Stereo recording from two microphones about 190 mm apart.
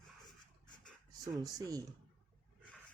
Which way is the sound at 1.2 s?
20° right (ahead or behind).